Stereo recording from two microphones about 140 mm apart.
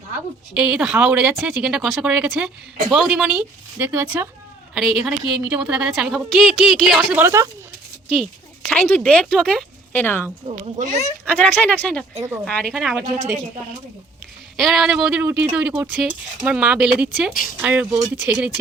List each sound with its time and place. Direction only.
0.5 s a woman's voice: 5° right (ahead or behind); by 10.2 s 15° left (ahead or behind)
10.4 s speech: 55° right (ahead or behind)
11.3 s a woman's voice: 10° left (ahead or behind)
14.5 s speech: centre (ahead or behind)